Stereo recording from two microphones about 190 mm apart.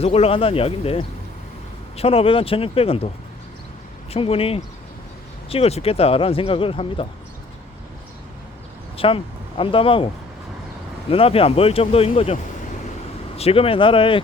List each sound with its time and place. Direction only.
0.0 s speech: 30° left (ahead or behind)
4.1 s speech: 30° left (ahead or behind)
9.0 s speech: 30° left (ahead or behind)
11.1 s speech: 30° left (ahead or behind)